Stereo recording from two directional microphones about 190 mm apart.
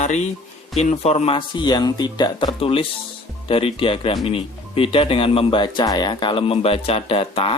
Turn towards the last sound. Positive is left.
turn(degrees=30)  # may be behind; listen again after turning